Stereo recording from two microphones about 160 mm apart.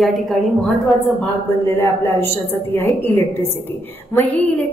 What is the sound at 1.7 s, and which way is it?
A woman's voice, 15° left (ahead or behind).